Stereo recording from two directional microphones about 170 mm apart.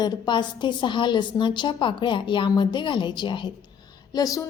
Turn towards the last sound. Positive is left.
turn(degrees=20)  # may be behind; listen again after turning